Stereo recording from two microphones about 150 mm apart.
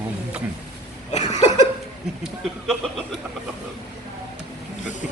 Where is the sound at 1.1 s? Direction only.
50° left (ahead or behind).